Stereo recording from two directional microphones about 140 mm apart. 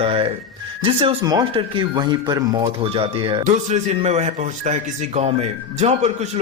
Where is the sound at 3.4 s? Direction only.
55° right (ahead or behind).